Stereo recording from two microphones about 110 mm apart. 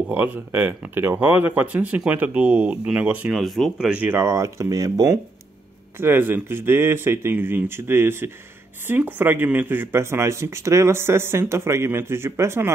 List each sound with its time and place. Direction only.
0.1 s speech: 15° right (ahead or behind)